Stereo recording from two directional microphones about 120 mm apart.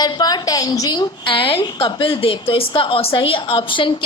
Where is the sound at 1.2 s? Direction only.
45° left (ahead or behind).